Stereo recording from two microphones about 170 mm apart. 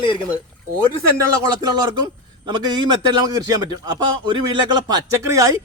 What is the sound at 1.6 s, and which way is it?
A man's voice, 25° right (ahead or behind).